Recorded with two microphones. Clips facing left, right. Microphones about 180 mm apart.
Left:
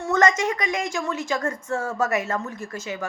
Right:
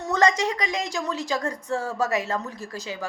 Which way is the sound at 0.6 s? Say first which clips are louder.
Left 2 dB; 35° right (ahead or behind).